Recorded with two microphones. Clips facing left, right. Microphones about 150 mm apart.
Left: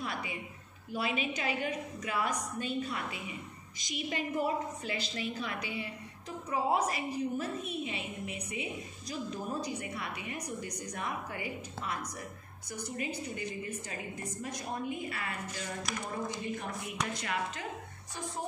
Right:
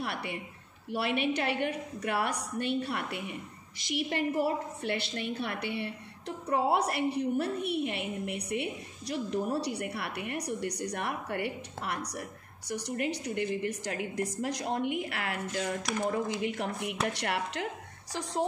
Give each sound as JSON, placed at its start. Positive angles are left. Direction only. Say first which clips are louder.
{"t": 0.0, "sound": "a woman's voice", "louder": "right 3 dB", "side_deg": -65}
{"t": 18.1, "sound": "speech", "louder": "right 6 dB", "side_deg": -90}